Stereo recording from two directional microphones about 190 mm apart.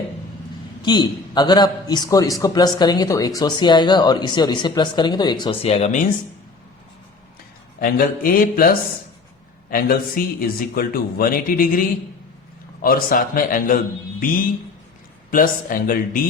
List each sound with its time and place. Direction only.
0.8 s speech: 25° left (ahead or behind)
7.8 s a man's voice: 50° left (ahead or behind)